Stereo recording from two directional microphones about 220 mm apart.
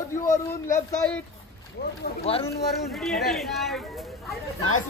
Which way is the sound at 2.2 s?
25° left (ahead or behind).